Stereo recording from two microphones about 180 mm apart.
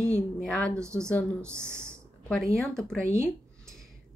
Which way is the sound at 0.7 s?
15° right (ahead or behind).